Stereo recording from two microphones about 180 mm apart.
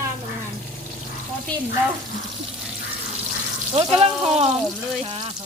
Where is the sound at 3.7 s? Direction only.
35° right (ahead or behind).